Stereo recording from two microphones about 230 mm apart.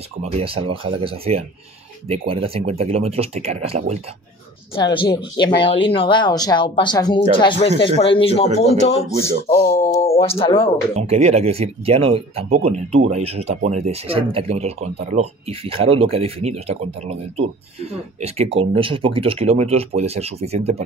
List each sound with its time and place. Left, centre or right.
0.2 s speech: right
4.7 s speech: left
9.8 s speech: centre
10.0 s speech: left
11.0 s speech: right